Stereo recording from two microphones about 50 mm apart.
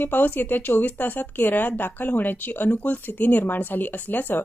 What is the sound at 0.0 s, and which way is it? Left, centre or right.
A woman's voice, left.